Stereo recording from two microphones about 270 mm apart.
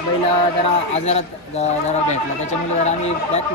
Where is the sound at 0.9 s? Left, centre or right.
Left.